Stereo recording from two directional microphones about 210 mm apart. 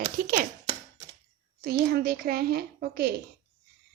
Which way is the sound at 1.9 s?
45° right (ahead or behind).